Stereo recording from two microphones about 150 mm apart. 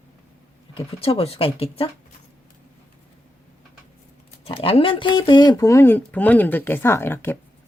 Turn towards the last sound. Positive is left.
turn(degrees=15)  # may be behind; listen again after turning